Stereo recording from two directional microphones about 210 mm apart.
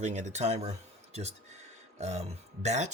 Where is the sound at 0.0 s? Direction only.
35° right (ahead or behind).